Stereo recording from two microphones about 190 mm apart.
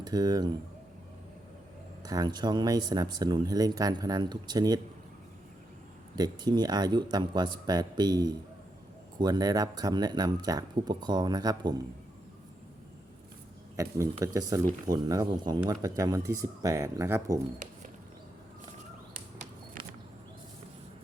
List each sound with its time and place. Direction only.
0.0 s speech: 20° right (ahead or behind)
2.0 s speech: 20° right (ahead or behind)
6.1 s speech: 20° right (ahead or behind)
13.7 s speech: 15° right (ahead or behind)